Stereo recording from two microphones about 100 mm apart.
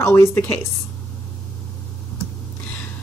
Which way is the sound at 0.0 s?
25° left (ahead or behind).